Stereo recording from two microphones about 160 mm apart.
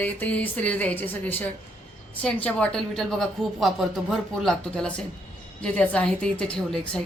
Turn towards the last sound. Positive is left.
turn(degrees=5)  # may be behind; listen again after turning